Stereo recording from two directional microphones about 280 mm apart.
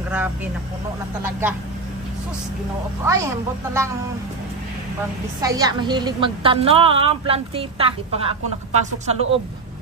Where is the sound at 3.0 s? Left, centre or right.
Centre.